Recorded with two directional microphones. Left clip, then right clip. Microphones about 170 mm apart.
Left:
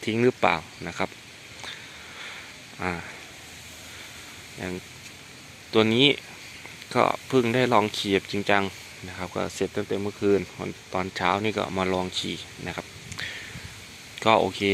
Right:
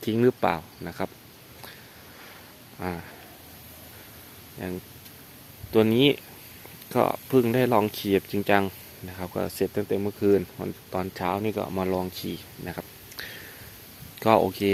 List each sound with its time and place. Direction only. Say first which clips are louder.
0.0 s speech: even; 25° right (ahead or behind)
0.3 s speech: left 3 dB; 15° right (ahead or behind)
2.7 s speech: left 3 dB; 10° right (ahead or behind)
4.6 s speech: left 1 dB; 15° right (ahead or behind)
9.6 s speech: right 3 dB; 30° right (ahead or behind); by 12.0 s 10° right (ahead or behind)
12.1 s speech: left 5 dB; 20° right (ahead or behind)